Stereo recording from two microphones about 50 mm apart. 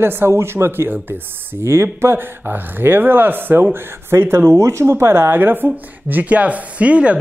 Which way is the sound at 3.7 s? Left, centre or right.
Right.